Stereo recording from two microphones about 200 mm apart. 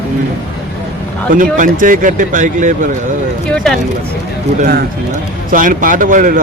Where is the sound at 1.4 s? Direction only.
40° right (ahead or behind).